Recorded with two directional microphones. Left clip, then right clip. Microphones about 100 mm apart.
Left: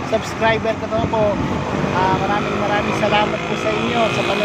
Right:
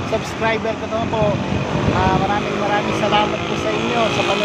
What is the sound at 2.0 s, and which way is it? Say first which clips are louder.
Speech: left 1 dB; 5° left (ahead or behind).